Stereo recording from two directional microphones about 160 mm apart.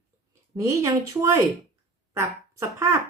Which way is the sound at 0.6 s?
20° right (ahead or behind).